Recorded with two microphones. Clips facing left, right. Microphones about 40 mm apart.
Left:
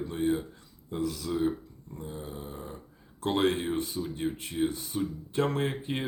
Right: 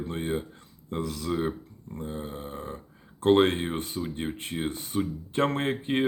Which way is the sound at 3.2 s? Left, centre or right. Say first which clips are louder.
Right 6 dB; right.